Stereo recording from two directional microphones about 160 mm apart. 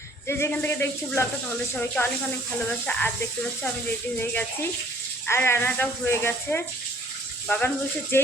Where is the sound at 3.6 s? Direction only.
10° left (ahead or behind).